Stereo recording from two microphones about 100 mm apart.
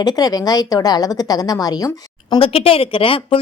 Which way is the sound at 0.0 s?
40° left (ahead or behind).